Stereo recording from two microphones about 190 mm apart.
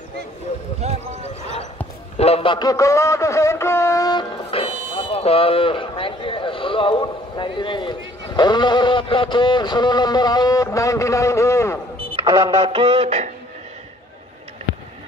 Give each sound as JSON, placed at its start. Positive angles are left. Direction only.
{"t": 0.7, "sound": "a sound", "side_deg": -35}
{"t": 2.1, "sound": "a man's voice", "side_deg": 30}
{"t": 12.3, "sound": "music", "side_deg": -20}